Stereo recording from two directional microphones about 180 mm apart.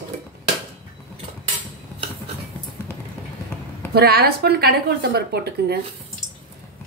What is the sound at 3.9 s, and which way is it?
A woman's voice, 60° right (ahead or behind).